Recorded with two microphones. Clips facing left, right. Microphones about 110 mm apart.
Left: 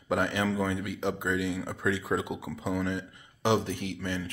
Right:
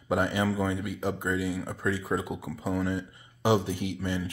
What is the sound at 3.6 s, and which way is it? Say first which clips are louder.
Speech: right 2 dB; 60° left (ahead or behind).